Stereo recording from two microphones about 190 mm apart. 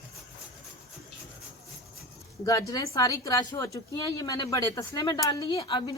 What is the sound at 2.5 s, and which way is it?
A woman's voice, 20° left (ahead or behind).